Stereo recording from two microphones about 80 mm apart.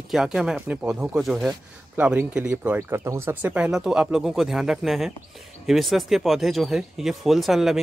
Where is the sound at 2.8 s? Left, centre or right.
Right.